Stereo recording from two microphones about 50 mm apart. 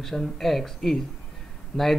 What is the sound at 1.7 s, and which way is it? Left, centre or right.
Speech, left.